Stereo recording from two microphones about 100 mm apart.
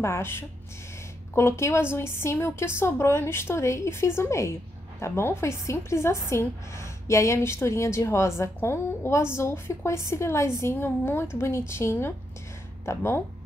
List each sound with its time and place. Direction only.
0.0 s a woman's voice: 25° left (ahead or behind)